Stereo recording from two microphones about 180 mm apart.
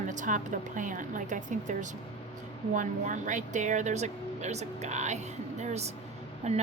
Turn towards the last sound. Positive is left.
turn(degrees=-40)  # may be behind; listen again after turning